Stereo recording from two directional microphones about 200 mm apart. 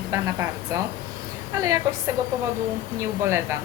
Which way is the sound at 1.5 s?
15° right (ahead or behind).